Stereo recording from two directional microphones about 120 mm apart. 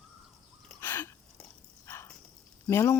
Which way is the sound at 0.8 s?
20° left (ahead or behind).